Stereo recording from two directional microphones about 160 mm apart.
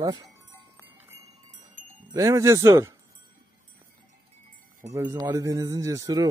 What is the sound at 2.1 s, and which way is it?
Speech, 20° right (ahead or behind).